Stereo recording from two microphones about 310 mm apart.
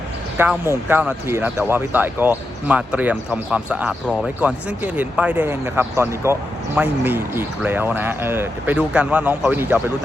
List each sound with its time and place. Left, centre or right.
0.4 s speech: centre